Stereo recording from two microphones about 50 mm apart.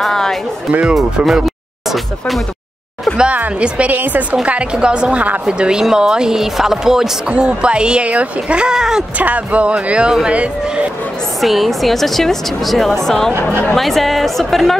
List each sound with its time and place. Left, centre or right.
0.0 s music: centre
0.7 s speech: right
0.9 s speech: centre
3.1 s speech: centre
3.5 s speech: right
3.9 s a woman's voice: right
4.5 s speech: right
9.2 s speech: right
11.4 s speech: centre
13.3 s speech: right
13.7 s speech: centre